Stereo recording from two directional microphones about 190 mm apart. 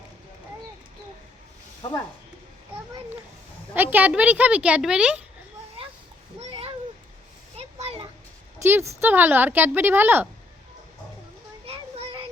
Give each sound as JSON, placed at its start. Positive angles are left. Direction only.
{"t": 3.8, "sound": "a woman's voice", "side_deg": -10}
{"t": 5.8, "sound": "a sound", "side_deg": -30}
{"t": 6.4, "sound": "cat", "side_deg": -35}
{"t": 7.5, "sound": "children playing", "side_deg": -35}
{"t": 8.5, "sound": "a woman's voice", "side_deg": -15}
{"t": 11.6, "sound": "child singing", "side_deg": -30}